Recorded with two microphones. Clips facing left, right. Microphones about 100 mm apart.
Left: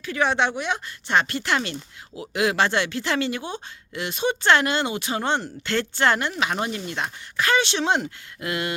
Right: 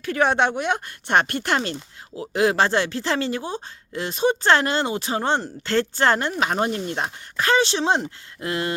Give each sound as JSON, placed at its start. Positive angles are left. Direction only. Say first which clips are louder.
{"t": 0.0, "sound": "speech", "louder": "right 3 dB", "side_deg": -45}
{"t": 2.3, "sound": "speech", "louder": "right 2 dB", "side_deg": -35}